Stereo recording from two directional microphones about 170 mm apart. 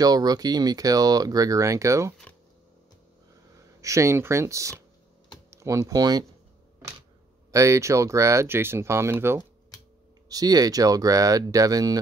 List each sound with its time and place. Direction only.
0.0 s speech: 20° right (ahead or behind)
3.8 s speech: 15° right (ahead or behind)
7.5 s speech: 15° right (ahead or behind)